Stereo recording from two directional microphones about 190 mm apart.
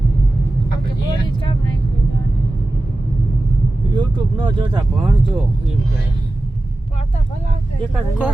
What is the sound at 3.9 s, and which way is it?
Speech, 25° right (ahead or behind).